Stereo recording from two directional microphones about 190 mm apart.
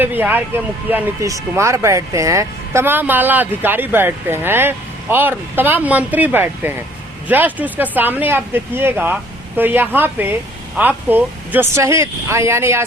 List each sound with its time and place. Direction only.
0.0 s speech: 10° right (ahead or behind)